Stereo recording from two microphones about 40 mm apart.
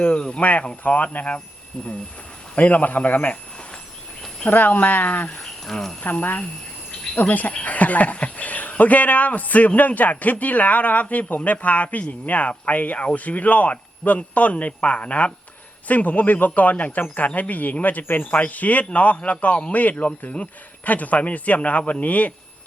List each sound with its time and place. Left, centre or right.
0.2 s a man's voice: left
2.6 s a man's voice: left
4.4 s speech: left
5.6 s speech: centre
6.1 s a man's voice: left
19.7 s a man's voice: left